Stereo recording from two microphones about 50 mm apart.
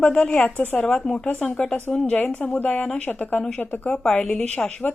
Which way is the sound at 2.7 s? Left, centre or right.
Centre.